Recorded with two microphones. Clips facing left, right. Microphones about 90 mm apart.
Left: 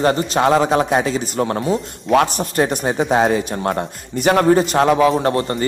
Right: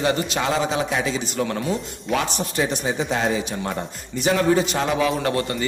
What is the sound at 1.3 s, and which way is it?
Speech, 40° left (ahead or behind).